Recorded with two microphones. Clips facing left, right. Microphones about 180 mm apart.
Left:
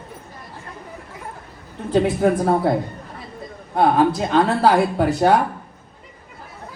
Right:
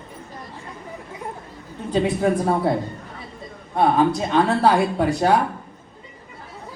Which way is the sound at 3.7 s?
Centre (ahead or behind).